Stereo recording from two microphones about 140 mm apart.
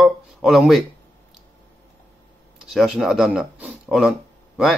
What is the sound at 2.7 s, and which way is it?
Speech, centre (ahead or behind).